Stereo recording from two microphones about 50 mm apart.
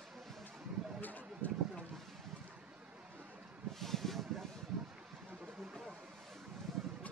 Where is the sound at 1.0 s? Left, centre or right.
Left.